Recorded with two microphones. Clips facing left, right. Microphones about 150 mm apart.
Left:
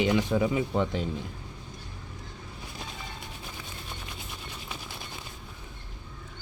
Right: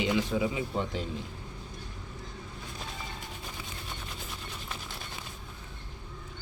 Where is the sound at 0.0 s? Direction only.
50° left (ahead or behind).